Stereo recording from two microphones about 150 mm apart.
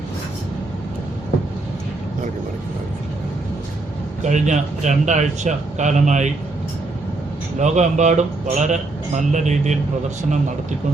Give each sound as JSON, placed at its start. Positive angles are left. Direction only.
{"t": 4.2, "sound": "speech", "side_deg": -55}
{"t": 7.6, "sound": "speech", "side_deg": -50}